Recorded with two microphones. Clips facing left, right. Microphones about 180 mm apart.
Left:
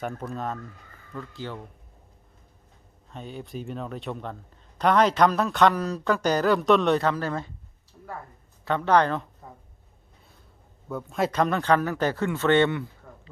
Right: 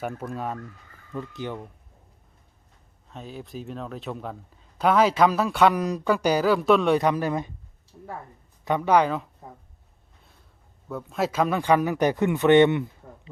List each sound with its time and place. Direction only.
0.0 s speech: 10° right (ahead or behind)
3.1 s speech: centre (ahead or behind)
8.6 s speech: 10° right (ahead or behind)
10.8 s speech: centre (ahead or behind); by 12.9 s 20° right (ahead or behind)